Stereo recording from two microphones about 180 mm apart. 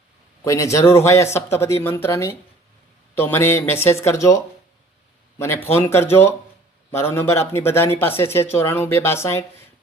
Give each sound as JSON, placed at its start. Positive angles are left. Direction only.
{"t": 0.4, "sound": "speech", "side_deg": 15}